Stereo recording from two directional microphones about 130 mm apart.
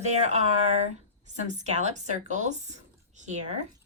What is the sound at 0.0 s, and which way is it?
Speech, 60° right (ahead or behind).